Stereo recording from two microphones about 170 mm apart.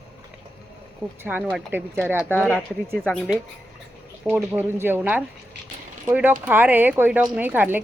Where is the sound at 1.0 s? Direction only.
5° left (ahead or behind).